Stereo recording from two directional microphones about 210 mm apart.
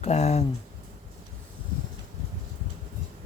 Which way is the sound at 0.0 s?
30° left (ahead or behind).